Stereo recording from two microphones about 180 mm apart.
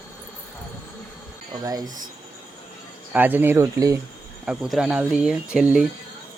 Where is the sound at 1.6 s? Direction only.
20° right (ahead or behind).